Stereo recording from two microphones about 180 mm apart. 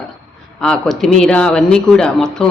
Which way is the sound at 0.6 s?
5° left (ahead or behind).